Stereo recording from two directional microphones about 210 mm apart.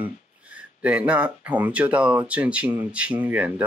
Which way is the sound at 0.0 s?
5° right (ahead or behind).